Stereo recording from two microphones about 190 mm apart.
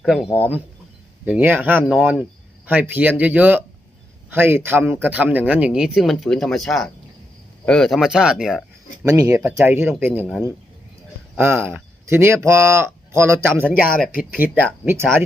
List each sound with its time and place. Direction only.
0.0 s speech: centre (ahead or behind)
9.0 s speech: 15° right (ahead or behind)
11.3 s speech: 10° right (ahead or behind)